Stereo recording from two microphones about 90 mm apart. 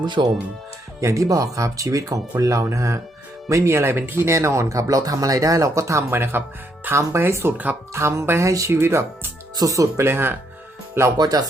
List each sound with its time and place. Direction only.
0.0 s speech: 55° right (ahead or behind)
1.0 s speech: 40° right (ahead or behind)
11.2 s music: 45° right (ahead or behind)